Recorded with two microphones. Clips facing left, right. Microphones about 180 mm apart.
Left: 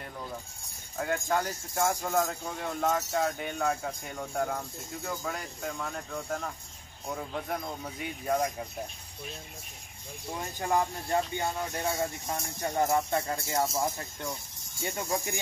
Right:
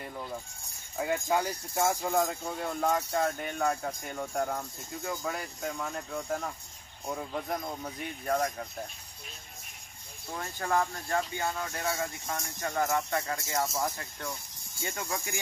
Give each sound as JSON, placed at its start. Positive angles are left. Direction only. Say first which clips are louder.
{"t": 0.9, "sound": "speech", "louder": "right 1 dB", "side_deg": -5}
{"t": 8.3, "sound": "speech", "louder": "left 1 dB", "side_deg": 15}
{"t": 10.3, "sound": "speech", "louder": "left 1 dB", "side_deg": 15}